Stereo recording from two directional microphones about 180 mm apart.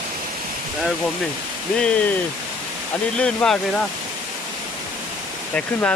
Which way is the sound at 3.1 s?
5° left (ahead or behind).